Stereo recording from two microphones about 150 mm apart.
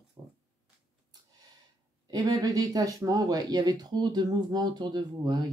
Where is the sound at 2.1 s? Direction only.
25° right (ahead or behind).